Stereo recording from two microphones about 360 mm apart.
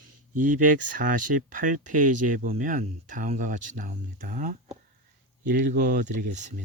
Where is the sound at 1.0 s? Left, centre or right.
Right.